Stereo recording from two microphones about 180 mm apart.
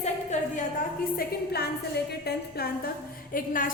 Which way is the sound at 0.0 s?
40° left (ahead or behind).